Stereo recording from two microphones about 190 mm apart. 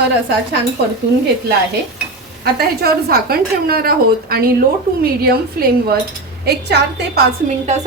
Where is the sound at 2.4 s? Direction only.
55° right (ahead or behind).